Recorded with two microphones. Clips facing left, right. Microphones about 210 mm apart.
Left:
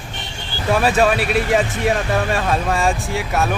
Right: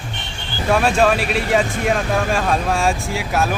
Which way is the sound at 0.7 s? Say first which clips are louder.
Even; centre (ahead or behind).